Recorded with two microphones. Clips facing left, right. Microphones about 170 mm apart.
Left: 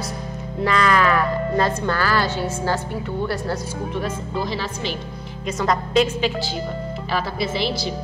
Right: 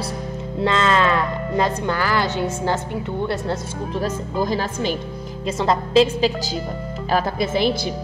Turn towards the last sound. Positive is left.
turn(degrees=-50)  # may be behind; listen again after turning